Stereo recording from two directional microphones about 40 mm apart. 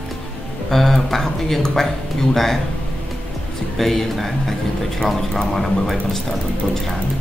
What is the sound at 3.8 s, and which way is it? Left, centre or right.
Speech, centre.